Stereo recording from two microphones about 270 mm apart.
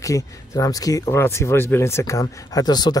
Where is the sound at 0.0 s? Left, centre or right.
Centre.